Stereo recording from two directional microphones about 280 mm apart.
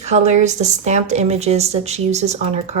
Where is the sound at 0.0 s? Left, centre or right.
Right.